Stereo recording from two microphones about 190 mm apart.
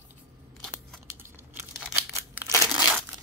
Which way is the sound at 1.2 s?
10° right (ahead or behind).